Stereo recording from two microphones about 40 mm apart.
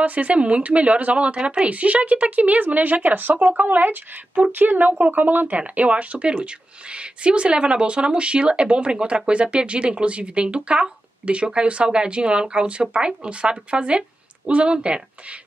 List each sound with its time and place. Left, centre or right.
0.0 s a woman's voice: right
5.6 s speech: right